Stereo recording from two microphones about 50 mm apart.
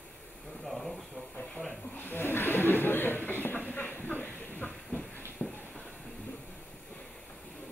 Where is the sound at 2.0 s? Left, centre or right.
Left.